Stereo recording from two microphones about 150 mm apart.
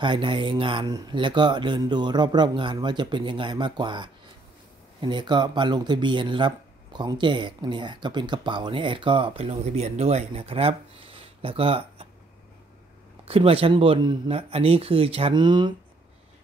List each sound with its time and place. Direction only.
0.0 s speech: 35° right (ahead or behind)
13.2 s speech: 40° right (ahead or behind)